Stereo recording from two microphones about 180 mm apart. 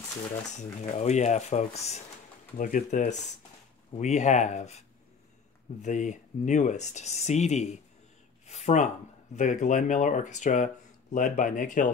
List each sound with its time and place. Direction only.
0.6 s speech: 40° left (ahead or behind)